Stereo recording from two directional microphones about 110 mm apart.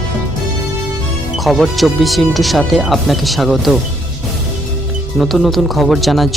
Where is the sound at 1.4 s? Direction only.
Centre (ahead or behind).